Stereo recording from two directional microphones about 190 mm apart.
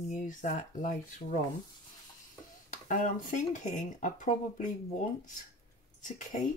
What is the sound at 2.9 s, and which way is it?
Speech, 40° left (ahead or behind).